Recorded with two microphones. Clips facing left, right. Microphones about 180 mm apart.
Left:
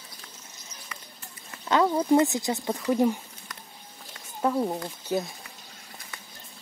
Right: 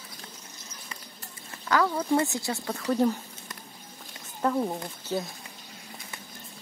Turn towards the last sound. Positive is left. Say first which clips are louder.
# left 3 dB
turn(degrees=10)  # may be behind; listen again after turning